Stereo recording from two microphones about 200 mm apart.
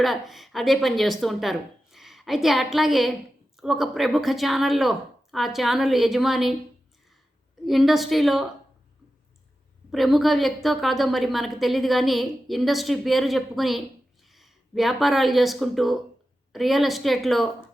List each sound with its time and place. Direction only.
0.0 s a woman's voice: centre (ahead or behind)
7.6 s a woman's voice: centre (ahead or behind)
9.9 s a woman's voice: centre (ahead or behind)